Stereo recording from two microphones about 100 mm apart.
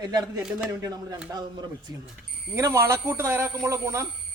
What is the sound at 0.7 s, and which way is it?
Speech, 35° right (ahead or behind).